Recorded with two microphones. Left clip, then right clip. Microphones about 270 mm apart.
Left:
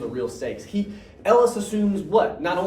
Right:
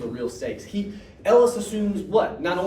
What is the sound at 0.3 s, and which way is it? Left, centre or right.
Speech, centre.